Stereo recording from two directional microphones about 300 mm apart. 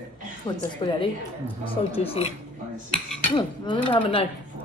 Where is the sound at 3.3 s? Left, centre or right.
Centre.